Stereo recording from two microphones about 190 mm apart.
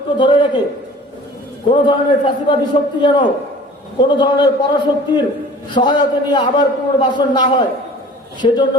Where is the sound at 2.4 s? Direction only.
25° left (ahead or behind).